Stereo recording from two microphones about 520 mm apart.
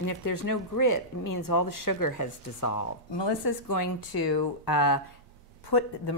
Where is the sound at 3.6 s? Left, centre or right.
Left.